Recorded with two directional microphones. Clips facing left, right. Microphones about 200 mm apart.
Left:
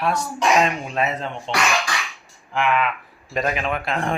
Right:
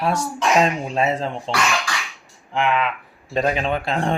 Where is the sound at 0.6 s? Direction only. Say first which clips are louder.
Right 3 dB; 30° right (ahead or behind).